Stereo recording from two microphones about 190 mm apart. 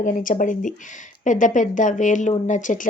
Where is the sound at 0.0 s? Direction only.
45° left (ahead or behind).